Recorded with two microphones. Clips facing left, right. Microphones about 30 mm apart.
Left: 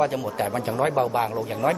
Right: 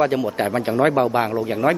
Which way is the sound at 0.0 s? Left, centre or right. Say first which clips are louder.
Right 4 dB; right.